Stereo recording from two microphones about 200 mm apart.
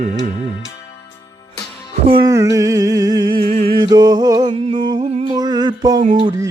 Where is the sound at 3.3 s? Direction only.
45° right (ahead or behind).